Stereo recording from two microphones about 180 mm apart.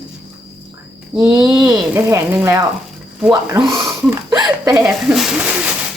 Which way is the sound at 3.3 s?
20° right (ahead or behind).